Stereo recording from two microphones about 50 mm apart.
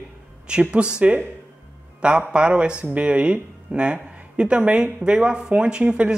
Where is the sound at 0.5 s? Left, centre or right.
Right.